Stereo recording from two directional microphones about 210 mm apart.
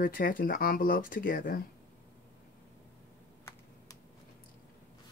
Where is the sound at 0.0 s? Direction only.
40° left (ahead or behind).